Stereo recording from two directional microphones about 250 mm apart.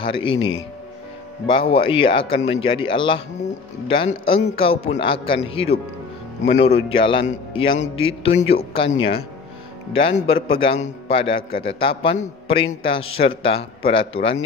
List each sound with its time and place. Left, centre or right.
0.0 s a man's voice: centre
1.5 s a man's voice: left
8.8 s speech: left
9.9 s a man's voice: left